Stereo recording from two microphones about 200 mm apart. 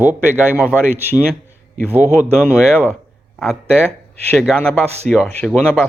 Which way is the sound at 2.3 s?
5° left (ahead or behind).